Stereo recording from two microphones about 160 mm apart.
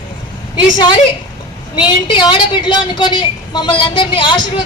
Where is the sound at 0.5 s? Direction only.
30° left (ahead or behind).